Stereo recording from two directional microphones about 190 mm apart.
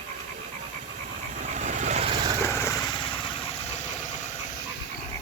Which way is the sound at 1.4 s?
40° right (ahead or behind).